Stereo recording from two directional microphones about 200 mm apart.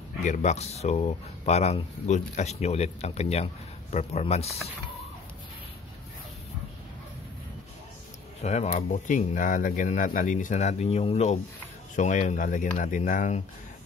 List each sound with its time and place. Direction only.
0.2 s speech: 35° left (ahead or behind)
8.4 s speech: 35° left (ahead or behind)